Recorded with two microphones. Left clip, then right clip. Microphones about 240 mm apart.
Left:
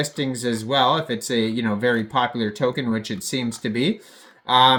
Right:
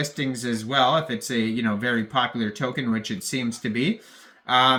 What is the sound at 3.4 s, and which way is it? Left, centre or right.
Speech, centre.